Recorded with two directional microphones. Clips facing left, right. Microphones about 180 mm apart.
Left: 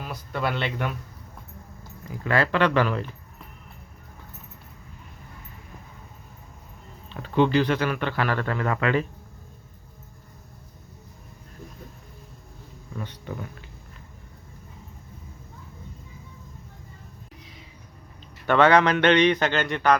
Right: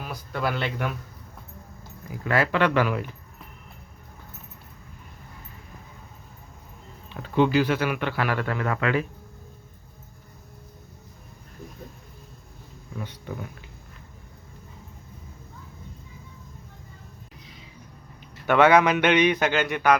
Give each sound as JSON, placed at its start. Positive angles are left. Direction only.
{"t": 0.0, "sound": "speech", "side_deg": 0}
{"t": 2.3, "sound": "speech", "side_deg": -10}
{"t": 7.1, "sound": "speech", "side_deg": -10}
{"t": 18.2, "sound": "speech", "side_deg": -10}